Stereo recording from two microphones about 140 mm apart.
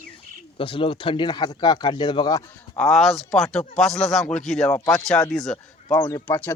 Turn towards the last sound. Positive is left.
turn(degrees=25)  # may be behind; listen again after turning